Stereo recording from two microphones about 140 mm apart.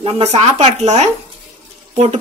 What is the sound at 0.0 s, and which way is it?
Speech, 40° right (ahead or behind).